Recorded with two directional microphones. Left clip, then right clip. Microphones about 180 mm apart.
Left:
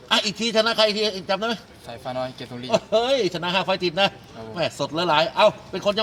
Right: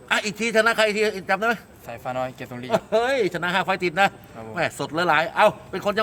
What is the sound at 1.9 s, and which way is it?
Speech, 5° right (ahead or behind).